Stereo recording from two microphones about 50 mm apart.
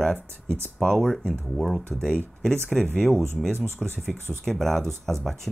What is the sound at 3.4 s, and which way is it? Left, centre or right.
Speech, centre.